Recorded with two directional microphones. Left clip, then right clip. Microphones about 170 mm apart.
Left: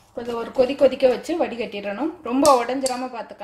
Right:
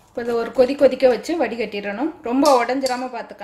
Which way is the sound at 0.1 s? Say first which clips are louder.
Right 5 dB; 15° right (ahead or behind).